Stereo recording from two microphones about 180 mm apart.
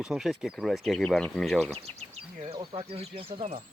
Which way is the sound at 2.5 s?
30° right (ahead or behind).